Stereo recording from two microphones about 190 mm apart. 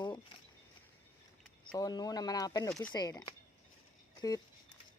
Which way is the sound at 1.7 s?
20° left (ahead or behind).